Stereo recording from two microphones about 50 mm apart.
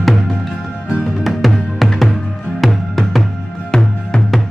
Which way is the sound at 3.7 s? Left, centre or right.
Centre.